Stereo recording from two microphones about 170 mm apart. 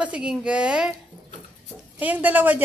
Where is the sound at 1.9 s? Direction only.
10° right (ahead or behind).